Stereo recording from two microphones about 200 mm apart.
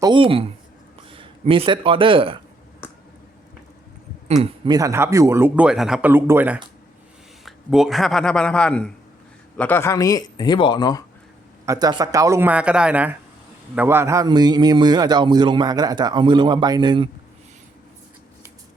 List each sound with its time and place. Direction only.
0.0 s a man's voice: 25° right (ahead or behind)
4.6 s a man's voice: 20° right (ahead or behind); by 11.0 s 20° left (ahead or behind)
11.6 s a man's voice: 15° right (ahead or behind)